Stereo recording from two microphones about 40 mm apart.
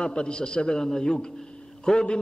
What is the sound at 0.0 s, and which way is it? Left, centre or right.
A man's voice, left.